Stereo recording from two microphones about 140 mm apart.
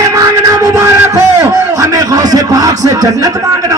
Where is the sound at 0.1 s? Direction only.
20° right (ahead or behind).